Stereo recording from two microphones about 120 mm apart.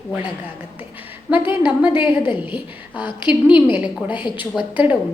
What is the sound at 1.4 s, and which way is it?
Speech, 45° left (ahead or behind).